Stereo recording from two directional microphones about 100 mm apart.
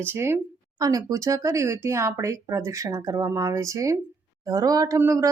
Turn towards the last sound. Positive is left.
turn(degrees=-30)  # may be behind; listen again after turning